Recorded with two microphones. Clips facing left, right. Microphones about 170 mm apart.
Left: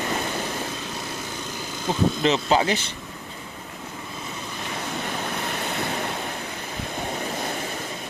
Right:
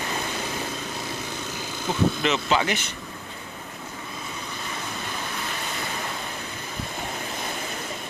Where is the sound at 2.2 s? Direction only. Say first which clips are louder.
Left 3 dB; 30° left (ahead or behind).